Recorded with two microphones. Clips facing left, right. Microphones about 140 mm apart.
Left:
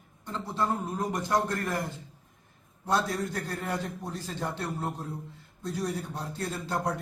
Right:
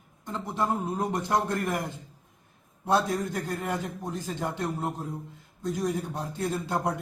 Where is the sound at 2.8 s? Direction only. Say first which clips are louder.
Right 3 dB; 25° right (ahead or behind).